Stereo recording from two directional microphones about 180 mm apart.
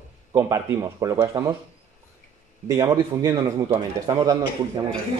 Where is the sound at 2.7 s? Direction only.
20° right (ahead or behind).